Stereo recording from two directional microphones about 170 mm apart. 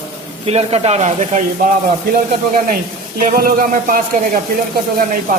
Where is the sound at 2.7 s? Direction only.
55° right (ahead or behind).